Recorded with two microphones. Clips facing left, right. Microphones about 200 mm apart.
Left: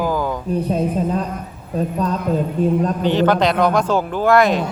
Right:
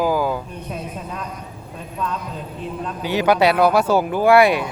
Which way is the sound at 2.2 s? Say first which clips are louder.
Left 12 dB; 45° left (ahead or behind).